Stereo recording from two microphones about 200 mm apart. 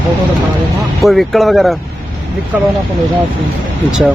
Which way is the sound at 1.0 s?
Centre (ahead or behind).